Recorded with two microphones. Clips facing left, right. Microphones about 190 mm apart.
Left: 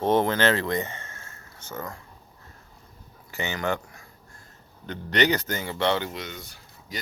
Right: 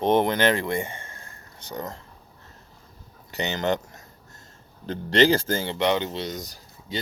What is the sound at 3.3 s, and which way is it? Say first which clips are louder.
A man's voice: right 3 dB; 20° right (ahead or behind).